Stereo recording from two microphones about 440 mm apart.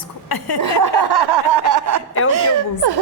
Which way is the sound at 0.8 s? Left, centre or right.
Right.